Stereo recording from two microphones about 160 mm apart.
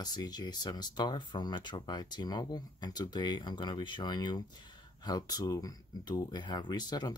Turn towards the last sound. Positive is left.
turn(degrees=25)  # may be behind; listen again after turning